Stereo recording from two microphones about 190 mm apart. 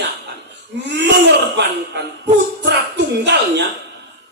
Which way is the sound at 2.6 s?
65° right (ahead or behind).